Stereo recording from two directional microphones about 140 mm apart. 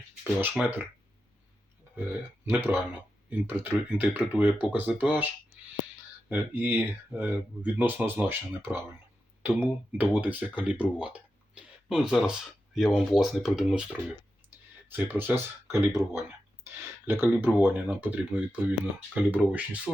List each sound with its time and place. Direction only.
0.4 s speech: 10° right (ahead or behind)
2.5 s speech: 15° right (ahead or behind)
6.3 s speech: 15° right (ahead or behind)